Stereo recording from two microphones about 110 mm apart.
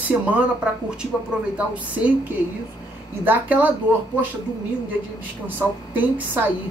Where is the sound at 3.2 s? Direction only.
15° right (ahead or behind).